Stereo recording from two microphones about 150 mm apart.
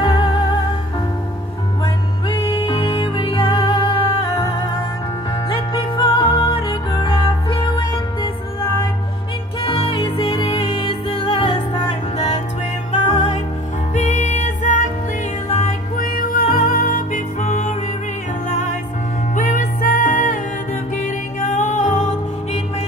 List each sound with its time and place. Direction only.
0.0 s music: 30° left (ahead or behind)
2.2 s music: 35° left (ahead or behind)
5.5 s music: 35° left (ahead or behind)
9.7 s music: 35° left (ahead or behind)
12.9 s music: 35° left (ahead or behind)
13.9 s music: 50° left (ahead or behind)
16.0 s music: 70° left (ahead or behind); by 17.7 s 55° left (ahead or behind)
19.3 s music: 65° left (ahead or behind)